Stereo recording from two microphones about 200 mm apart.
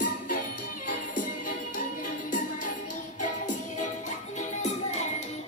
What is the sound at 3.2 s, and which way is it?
Music, 40° left (ahead or behind).